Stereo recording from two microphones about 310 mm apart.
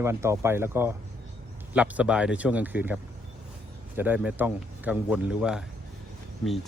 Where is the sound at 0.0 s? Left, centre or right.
Centre.